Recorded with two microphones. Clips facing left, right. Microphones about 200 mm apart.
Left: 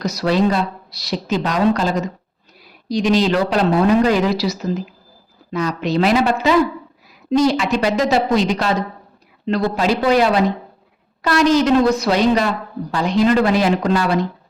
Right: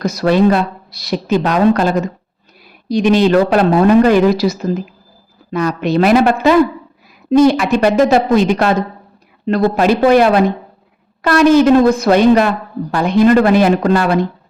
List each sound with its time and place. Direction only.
0.0 s a woman's voice: 50° right (ahead or behind)